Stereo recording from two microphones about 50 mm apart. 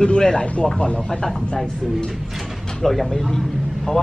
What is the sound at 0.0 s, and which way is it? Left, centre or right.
Speech, centre.